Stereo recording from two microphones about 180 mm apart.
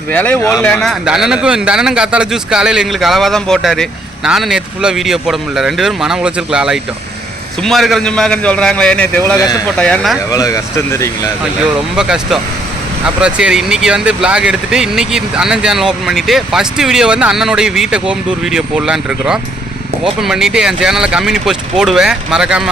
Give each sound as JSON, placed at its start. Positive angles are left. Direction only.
{"t": 0.1, "sound": "a man's voice", "side_deg": 10}
{"t": 9.4, "sound": "speech", "side_deg": 20}
{"t": 9.7, "sound": "speech", "side_deg": 5}
{"t": 10.2, "sound": "speech", "side_deg": 20}
{"t": 11.9, "sound": "a man's voice", "side_deg": -5}